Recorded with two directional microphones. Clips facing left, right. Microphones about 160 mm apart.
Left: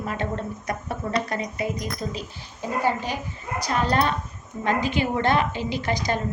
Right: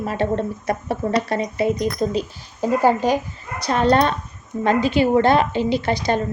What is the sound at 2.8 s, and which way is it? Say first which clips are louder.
Speech: right 7 dB; 45° right (ahead or behind).